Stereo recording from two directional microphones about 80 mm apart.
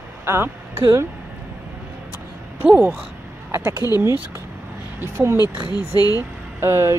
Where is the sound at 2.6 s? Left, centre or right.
Right.